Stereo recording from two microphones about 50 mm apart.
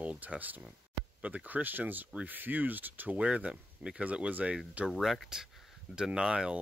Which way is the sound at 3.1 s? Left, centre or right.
Right.